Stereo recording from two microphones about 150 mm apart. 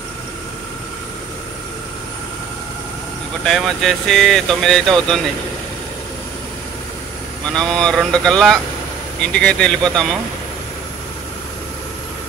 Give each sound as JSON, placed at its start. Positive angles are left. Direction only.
{"t": 3.4, "sound": "speech", "side_deg": 0}
{"t": 7.5, "sound": "speech", "side_deg": 5}